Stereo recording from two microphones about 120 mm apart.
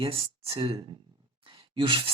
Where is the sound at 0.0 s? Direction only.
45° right (ahead or behind).